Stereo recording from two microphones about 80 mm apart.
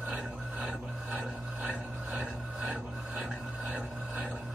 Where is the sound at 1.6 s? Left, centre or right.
Centre.